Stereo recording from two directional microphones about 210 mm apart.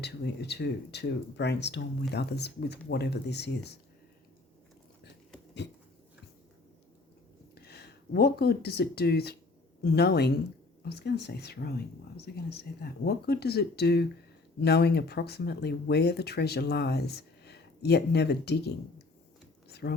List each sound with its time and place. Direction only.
0.0 s speech: 50° left (ahead or behind)
7.5 s speech: 50° left (ahead or behind)
19.6 s a sound: 50° left (ahead or behind)